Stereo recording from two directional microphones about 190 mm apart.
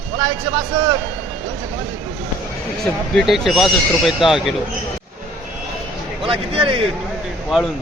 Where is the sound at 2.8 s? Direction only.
Centre (ahead or behind).